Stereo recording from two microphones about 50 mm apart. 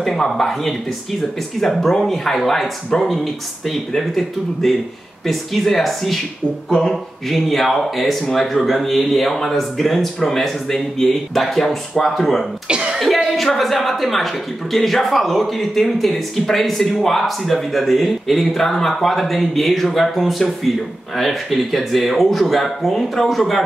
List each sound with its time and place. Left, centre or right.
0.0 s a man's voice: centre
12.6 s cough: centre
13.0 s music: centre
13.5 s a man's voice: centre